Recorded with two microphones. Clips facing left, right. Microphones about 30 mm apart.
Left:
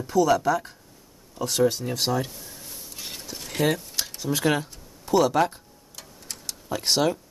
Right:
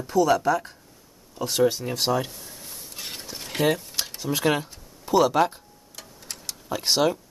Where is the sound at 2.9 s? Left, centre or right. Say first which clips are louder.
Right 1 dB; centre.